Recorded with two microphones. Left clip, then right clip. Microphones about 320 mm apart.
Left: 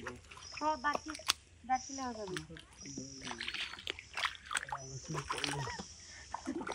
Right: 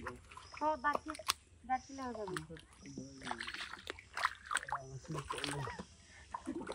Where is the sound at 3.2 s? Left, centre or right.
Centre.